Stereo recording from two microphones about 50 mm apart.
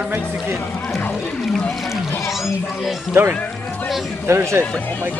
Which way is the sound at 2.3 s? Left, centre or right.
Centre.